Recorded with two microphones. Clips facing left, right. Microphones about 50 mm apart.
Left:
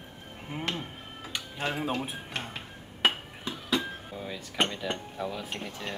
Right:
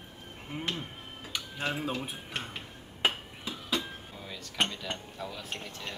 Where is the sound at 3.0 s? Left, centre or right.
Left.